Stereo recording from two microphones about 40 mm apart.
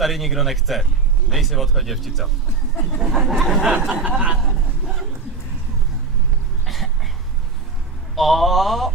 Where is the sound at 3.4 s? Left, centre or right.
Centre.